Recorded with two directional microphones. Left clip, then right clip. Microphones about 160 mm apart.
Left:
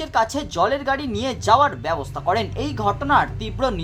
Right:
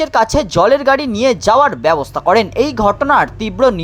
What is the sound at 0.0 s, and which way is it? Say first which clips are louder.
Speech: right 8 dB; 40° right (ahead or behind).